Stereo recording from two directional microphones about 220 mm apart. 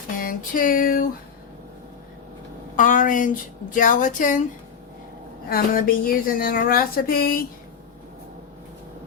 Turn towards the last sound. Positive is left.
turn(degrees=45)  # may be behind; listen again after turning